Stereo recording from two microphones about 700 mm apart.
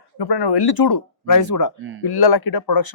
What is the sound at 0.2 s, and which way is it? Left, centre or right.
Speech, left.